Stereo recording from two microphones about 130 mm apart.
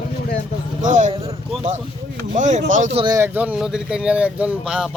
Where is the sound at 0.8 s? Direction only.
70° right (ahead or behind).